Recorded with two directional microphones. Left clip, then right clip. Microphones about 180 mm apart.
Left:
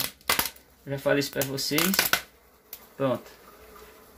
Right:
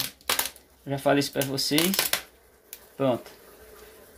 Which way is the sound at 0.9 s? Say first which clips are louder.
Right 2 dB; 20° right (ahead or behind).